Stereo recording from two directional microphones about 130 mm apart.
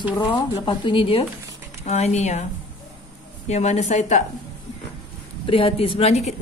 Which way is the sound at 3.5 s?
60° left (ahead or behind).